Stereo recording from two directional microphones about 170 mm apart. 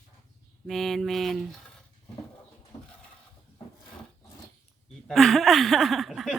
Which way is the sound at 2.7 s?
25° left (ahead or behind).